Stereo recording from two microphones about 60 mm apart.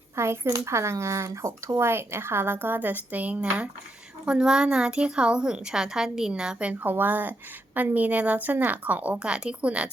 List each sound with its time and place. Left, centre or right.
0.2 s speech: right
1.8 s a woman's voice: right
4.3 s a woman's voice: centre